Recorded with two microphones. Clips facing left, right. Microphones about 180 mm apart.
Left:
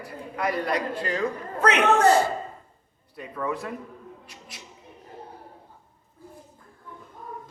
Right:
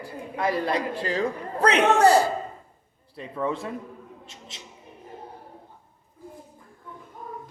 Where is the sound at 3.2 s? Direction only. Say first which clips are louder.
Right 2 dB; 25° right (ahead or behind).